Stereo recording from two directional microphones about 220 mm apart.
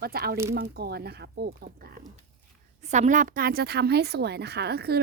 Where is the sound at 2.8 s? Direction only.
30° right (ahead or behind).